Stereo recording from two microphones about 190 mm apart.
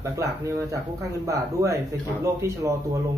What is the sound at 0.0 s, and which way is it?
Speech, 15° right (ahead or behind).